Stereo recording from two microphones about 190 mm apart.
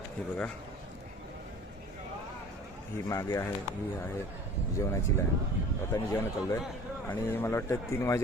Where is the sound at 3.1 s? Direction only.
15° left (ahead or behind).